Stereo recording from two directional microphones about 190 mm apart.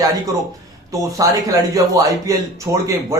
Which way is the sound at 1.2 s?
15° right (ahead or behind).